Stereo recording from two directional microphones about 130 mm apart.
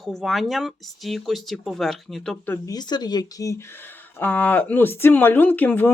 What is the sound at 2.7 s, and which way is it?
Speech, 30° left (ahead or behind).